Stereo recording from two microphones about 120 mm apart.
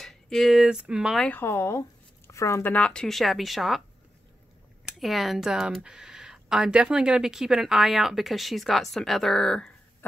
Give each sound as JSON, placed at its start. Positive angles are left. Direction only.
{"t": 0.0, "sound": "speech", "side_deg": 5}
{"t": 1.2, "sound": "speech", "side_deg": 15}
{"t": 2.7, "sound": "speech", "side_deg": 10}
{"t": 4.9, "sound": "speech", "side_deg": 0}